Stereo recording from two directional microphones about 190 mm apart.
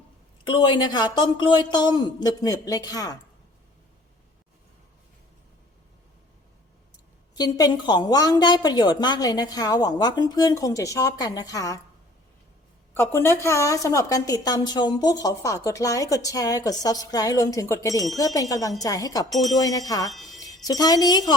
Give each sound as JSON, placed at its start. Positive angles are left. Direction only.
{"t": 0.4, "sound": "a woman's voice", "side_deg": 25}
{"t": 7.3, "sound": "a woman's voice", "side_deg": 20}
{"t": 12.9, "sound": "a woman's voice", "side_deg": 10}
{"t": 19.3, "sound": "speech", "side_deg": 0}
{"t": 19.5, "sound": "a woman's voice", "side_deg": 20}
{"t": 20.1, "sound": "music", "side_deg": 0}
{"t": 20.7, "sound": "a woman's voice", "side_deg": 20}